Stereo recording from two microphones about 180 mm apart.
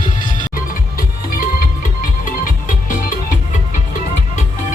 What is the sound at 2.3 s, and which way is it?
Music, 50° left (ahead or behind).